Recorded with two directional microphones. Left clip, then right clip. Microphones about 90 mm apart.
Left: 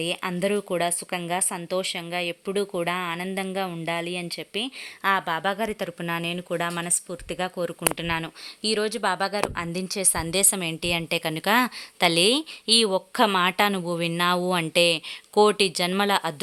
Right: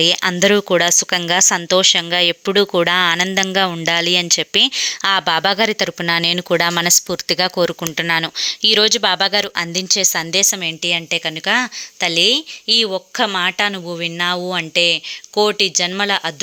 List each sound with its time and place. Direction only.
0.0 s speech: 40° right (ahead or behind)
3.2 s speech: 40° right (ahead or behind)
5.5 s speech: 30° right (ahead or behind)
6.2 s speech: 50° right (ahead or behind)
7.9 s speech: 15° right (ahead or behind)
8.2 s speech: 25° right (ahead or behind)
9.7 s a woman's voice: centre (ahead or behind)